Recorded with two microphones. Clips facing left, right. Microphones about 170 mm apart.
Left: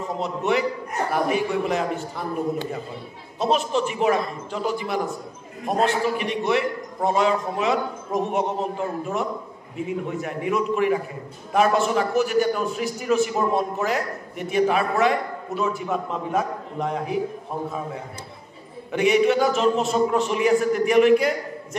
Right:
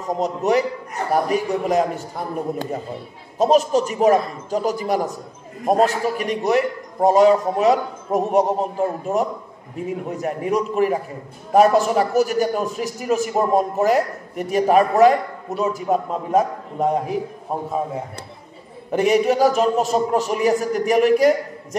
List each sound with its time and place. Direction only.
0.2 s a man's voice: 40° right (ahead or behind)
18.9 s a man's voice: 40° right (ahead or behind)